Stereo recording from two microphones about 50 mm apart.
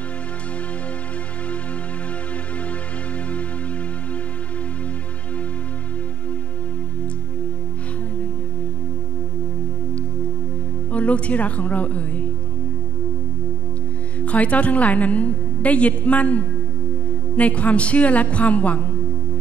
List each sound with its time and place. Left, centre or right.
10.9 s speech: left
14.2 s a woman's voice: left